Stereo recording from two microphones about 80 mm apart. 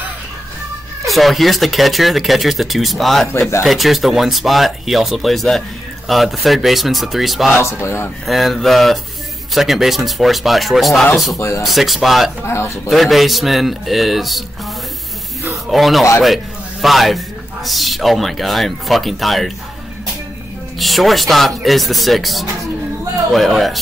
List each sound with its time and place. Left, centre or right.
1.0 s speech: centre
3.3 s speech: left
3.6 s speech: centre
7.5 s speech: left
8.3 s speech: centre
11.3 s speech: left
11.6 s speech: centre
12.4 s speech: left
12.8 s speech: centre
15.5 s speech: centre
20.8 s speech: centre